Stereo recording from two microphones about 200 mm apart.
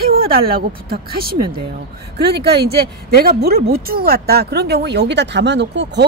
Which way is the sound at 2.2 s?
55° right (ahead or behind).